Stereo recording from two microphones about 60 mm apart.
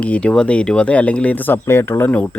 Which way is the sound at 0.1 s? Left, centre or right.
Centre.